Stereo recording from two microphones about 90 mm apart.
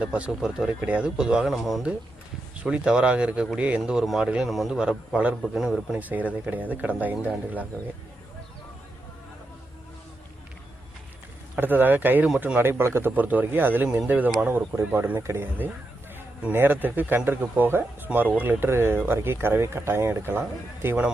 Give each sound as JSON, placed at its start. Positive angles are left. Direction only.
{"t": 0.0, "sound": "speech", "side_deg": -15}
{"t": 0.3, "sound": "speech", "side_deg": -5}
{"t": 6.0, "sound": "speech", "side_deg": -20}
{"t": 11.5, "sound": "speech", "side_deg": -20}
{"t": 20.8, "sound": "speech", "side_deg": -15}